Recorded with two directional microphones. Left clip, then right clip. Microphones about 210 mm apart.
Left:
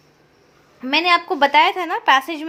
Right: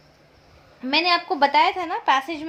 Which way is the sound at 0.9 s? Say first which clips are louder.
Left 4 dB; 25° left (ahead or behind).